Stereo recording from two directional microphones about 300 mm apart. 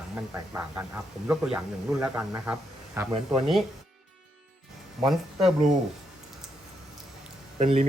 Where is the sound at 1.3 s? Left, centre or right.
Centre.